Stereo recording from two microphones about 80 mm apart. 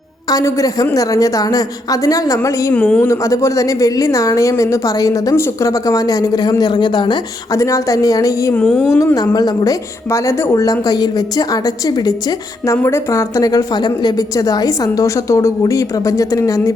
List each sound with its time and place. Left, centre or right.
0.3 s speech: left
2.7 s speech: centre
3.1 s speech: left
5.3 s speech: left
7.5 s speech: left
8.6 s a woman's voice: centre
9.1 s a woman's voice: left
10.1 s speech: left
12.7 s speech: left